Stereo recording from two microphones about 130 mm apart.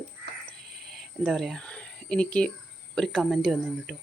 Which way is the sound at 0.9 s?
Centre (ahead or behind).